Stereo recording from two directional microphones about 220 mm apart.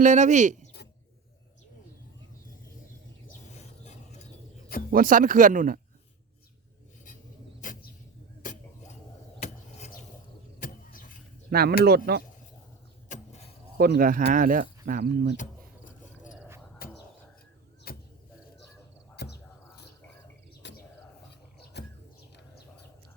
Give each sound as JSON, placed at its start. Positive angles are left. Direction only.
{"t": 0.0, "sound": "speech", "side_deg": -35}
{"t": 3.5, "sound": "a sound", "side_deg": 30}
{"t": 4.9, "sound": "speech", "side_deg": -40}
{"t": 7.6, "sound": "vehicle", "side_deg": 35}
{"t": 9.4, "sound": "a sound", "side_deg": 35}
{"t": 10.6, "sound": "vehicle", "side_deg": 40}
{"t": 11.5, "sound": "speech", "side_deg": -45}
{"t": 13.7, "sound": "speech", "side_deg": -45}
{"t": 16.8, "sound": "bird", "side_deg": 45}
{"t": 17.9, "sound": "vehicle", "side_deg": 45}
{"t": 19.1, "sound": "a sound", "side_deg": 50}
{"t": 20.6, "sound": "bird", "side_deg": 50}